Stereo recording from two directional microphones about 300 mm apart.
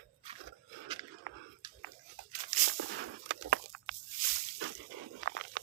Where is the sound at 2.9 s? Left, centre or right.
Right.